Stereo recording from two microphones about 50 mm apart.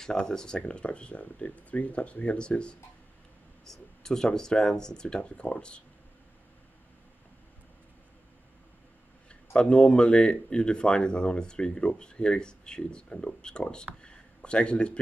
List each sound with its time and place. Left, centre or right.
0.0 s speech: centre
3.6 s speech: centre
9.3 s speech: left
14.0 s a sound: centre